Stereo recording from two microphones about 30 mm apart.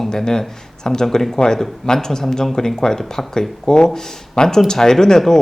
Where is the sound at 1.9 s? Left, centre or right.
Centre.